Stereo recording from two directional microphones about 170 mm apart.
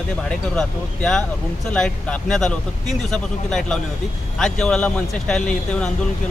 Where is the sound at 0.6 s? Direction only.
5° left (ahead or behind).